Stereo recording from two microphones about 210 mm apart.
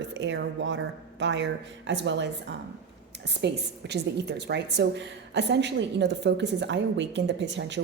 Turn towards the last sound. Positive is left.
turn(degrees=-55)  # may be behind; listen again after turning